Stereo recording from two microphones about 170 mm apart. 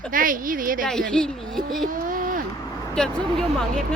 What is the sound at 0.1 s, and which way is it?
Speech, 55° right (ahead or behind).